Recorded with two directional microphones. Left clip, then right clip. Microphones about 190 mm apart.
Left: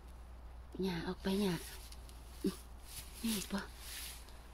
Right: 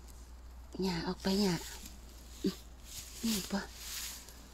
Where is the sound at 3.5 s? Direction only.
25° right (ahead or behind).